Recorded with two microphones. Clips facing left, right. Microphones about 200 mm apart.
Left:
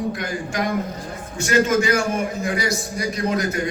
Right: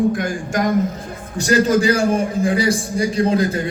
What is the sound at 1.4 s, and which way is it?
A man's voice, 35° right (ahead or behind).